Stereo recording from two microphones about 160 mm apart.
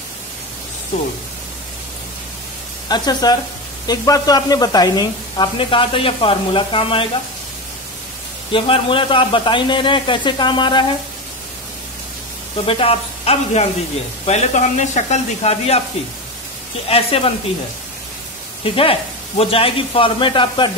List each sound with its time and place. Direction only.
2.9 s speech: 25° left (ahead or behind)
8.5 s speech: 30° left (ahead or behind)
12.6 s speech: 35° left (ahead or behind)
16.8 s speech: 35° left (ahead or behind)
18.6 s speech: 35° left (ahead or behind)